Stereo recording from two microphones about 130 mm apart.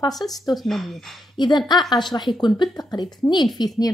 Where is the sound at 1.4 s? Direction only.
35° left (ahead or behind).